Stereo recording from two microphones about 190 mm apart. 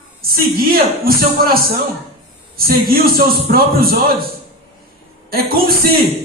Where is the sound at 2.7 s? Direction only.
50° right (ahead or behind).